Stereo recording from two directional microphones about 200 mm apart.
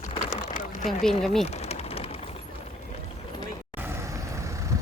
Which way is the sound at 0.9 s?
Centre (ahead or behind).